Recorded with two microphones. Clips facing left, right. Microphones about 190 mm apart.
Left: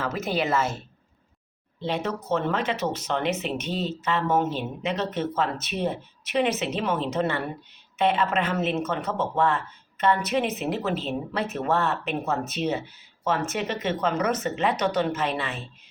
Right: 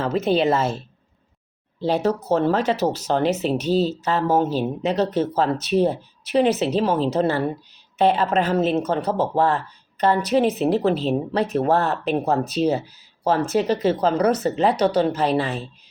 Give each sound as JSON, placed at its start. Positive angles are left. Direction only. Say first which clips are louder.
{"t": 0.0, "sound": "a woman's voice", "louder": "right 7 dB", "side_deg": -30}
{"t": 1.8, "sound": "speech", "louder": "right 7 dB", "side_deg": -40}